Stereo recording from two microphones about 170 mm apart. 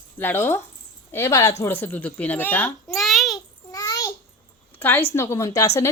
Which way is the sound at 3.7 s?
20° left (ahead or behind).